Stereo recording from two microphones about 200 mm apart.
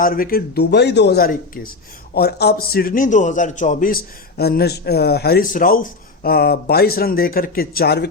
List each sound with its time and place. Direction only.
0.0 s a man's voice: 45° left (ahead or behind)